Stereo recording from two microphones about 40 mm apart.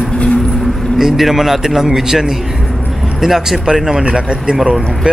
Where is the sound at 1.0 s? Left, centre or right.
Centre.